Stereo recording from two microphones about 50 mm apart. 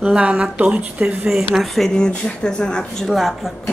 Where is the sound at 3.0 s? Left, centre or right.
Centre.